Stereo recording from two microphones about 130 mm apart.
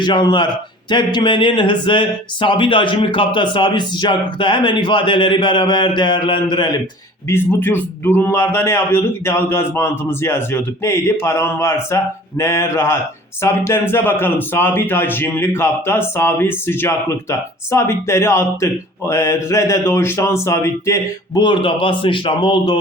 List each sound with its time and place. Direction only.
0.0 s speech: 35° left (ahead or behind)
7.3 s speech: 15° left (ahead or behind)
21.3 s speech: 35° left (ahead or behind)